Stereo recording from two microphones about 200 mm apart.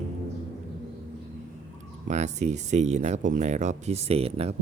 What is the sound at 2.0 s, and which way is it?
Speech, 35° right (ahead or behind).